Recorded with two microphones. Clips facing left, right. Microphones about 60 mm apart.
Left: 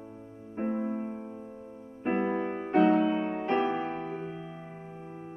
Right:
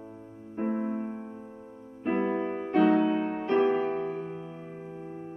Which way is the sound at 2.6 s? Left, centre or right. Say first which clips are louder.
Even; left.